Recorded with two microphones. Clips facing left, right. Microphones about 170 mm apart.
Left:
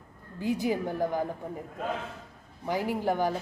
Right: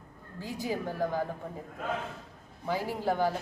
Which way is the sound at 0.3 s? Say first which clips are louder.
Left 6 dB; 20° left (ahead or behind).